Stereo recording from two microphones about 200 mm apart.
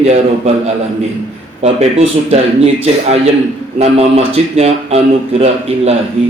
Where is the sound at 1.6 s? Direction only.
30° right (ahead or behind).